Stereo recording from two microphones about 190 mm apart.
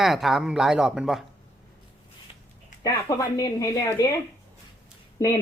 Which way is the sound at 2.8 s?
15° left (ahead or behind).